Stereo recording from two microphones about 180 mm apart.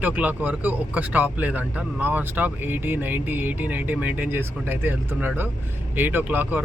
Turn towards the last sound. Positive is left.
turn(degrees=-10)  # may be behind; listen again after turning